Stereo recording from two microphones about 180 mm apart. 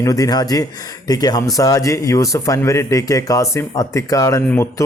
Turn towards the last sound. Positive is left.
turn(degrees=15)  # may be behind; listen again after turning